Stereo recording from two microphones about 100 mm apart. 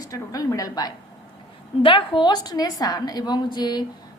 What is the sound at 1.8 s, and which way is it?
A woman's voice, 55° left (ahead or behind).